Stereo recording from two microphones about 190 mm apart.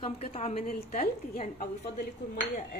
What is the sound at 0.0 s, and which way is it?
A woman's voice, 35° left (ahead or behind).